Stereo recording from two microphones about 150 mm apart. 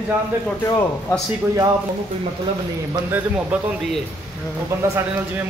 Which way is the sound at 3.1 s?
10° right (ahead or behind).